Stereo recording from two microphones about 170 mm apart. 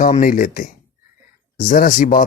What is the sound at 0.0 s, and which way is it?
Speech, 55° left (ahead or behind).